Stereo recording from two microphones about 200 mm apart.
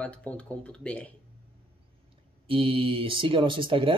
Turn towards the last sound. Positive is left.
turn(degrees=-25)  # may be behind; listen again after turning